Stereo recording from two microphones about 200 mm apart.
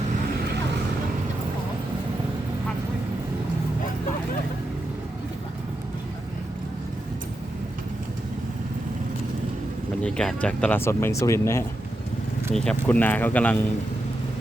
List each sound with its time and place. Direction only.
10.0 s speech: 5° left (ahead or behind)